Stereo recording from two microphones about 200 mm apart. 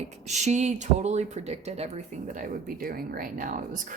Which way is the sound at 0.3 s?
35° right (ahead or behind).